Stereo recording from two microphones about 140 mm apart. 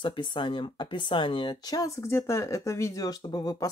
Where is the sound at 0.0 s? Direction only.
35° left (ahead or behind).